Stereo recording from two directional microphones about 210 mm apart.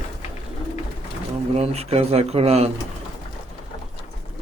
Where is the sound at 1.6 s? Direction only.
30° right (ahead or behind).